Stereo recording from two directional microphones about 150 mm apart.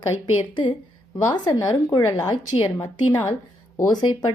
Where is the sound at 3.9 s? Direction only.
30° left (ahead or behind).